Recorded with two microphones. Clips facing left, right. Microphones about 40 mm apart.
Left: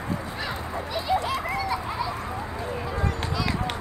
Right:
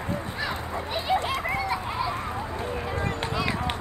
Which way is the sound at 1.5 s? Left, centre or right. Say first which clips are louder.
Even; right.